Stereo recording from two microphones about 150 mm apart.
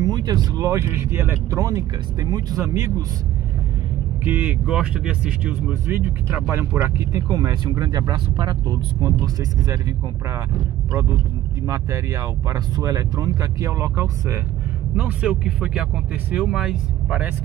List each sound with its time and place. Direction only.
0.0 s speech: 25° right (ahead or behind)
4.2 s speech: 10° right (ahead or behind)
11.6 s speech: 20° right (ahead or behind)
15.0 s speech: 5° right (ahead or behind)